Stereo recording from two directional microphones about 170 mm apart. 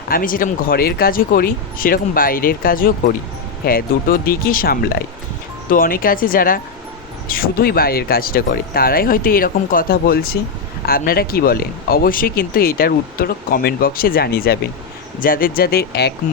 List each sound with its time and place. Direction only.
0.1 s speech: 55° left (ahead or behind)